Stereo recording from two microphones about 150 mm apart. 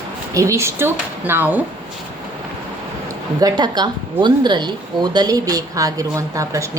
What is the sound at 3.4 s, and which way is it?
A woman's voice, 30° right (ahead or behind).